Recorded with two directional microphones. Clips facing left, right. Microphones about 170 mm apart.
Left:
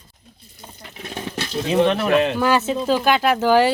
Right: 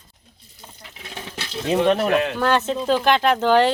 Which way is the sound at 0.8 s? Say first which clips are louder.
Left 6 dB; 50° left (ahead or behind).